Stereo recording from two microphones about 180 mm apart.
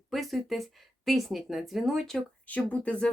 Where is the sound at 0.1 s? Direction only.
Centre (ahead or behind).